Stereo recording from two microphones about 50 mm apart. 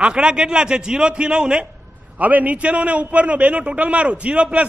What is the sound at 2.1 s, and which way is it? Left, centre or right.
A man's voice, right.